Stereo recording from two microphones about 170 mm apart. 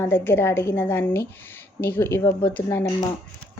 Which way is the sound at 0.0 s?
15° left (ahead or behind).